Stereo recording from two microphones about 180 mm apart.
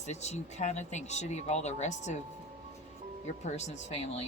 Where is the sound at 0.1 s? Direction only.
40° left (ahead or behind).